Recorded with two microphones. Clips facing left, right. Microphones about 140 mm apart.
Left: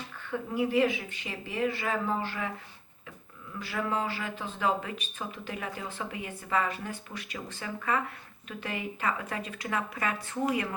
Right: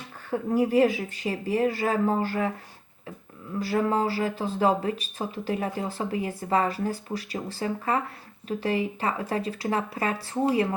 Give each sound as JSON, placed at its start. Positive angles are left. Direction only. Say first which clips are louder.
{"t": 0.3, "sound": "speech", "louder": "right 6 dB", "side_deg": -40}
{"t": 3.5, "sound": "speech", "louder": "right 7 dB", "side_deg": -35}